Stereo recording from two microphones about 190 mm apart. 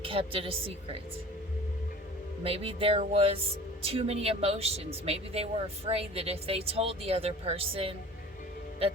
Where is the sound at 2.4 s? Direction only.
30° right (ahead or behind).